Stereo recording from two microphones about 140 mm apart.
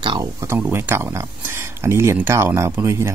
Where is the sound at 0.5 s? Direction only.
15° right (ahead or behind).